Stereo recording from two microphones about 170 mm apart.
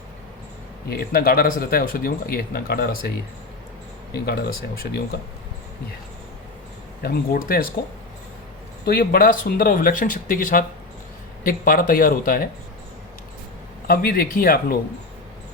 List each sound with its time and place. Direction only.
0.9 s speech: 60° left (ahead or behind)
4.1 s speech: 65° left (ahead or behind)
7.0 s speech: 60° left (ahead or behind)
8.9 s speech: 60° left (ahead or behind)
13.8 s speech: 60° left (ahead or behind)